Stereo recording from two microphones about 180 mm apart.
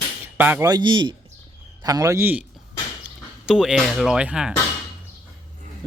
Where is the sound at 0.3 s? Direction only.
10° right (ahead or behind).